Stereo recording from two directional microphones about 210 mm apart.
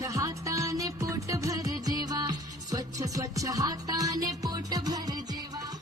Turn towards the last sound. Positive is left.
turn(degrees=-20)  # may be behind; listen again after turning